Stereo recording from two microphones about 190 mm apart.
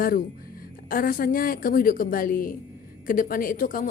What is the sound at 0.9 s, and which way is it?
A woman's voice, 50° left (ahead or behind).